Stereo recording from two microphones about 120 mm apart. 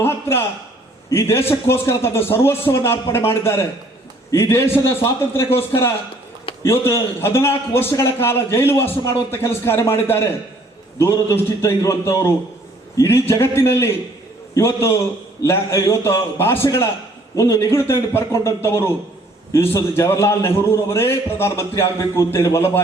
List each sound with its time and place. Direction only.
0.0 s a man's voice: 20° left (ahead or behind)
6.7 s a man's voice: 20° left (ahead or behind)